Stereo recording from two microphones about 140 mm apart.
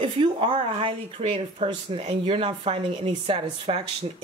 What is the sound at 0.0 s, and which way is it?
Speech, 40° right (ahead or behind).